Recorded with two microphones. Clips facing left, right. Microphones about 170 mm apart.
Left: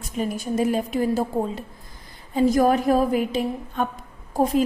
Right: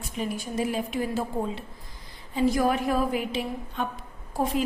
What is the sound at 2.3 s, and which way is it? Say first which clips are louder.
A woman's voice: left 5 dB; 45° left (ahead or behind).